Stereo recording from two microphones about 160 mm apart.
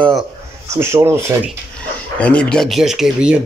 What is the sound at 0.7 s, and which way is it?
Speech, 15° right (ahead or behind).